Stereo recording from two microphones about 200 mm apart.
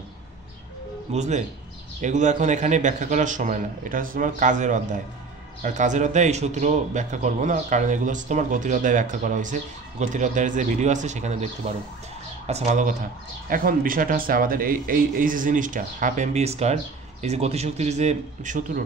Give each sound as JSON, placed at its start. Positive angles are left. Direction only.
{"t": 1.1, "sound": "a man's voice", "side_deg": -35}